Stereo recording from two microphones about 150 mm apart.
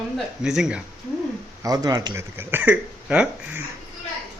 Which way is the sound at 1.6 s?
25° right (ahead or behind).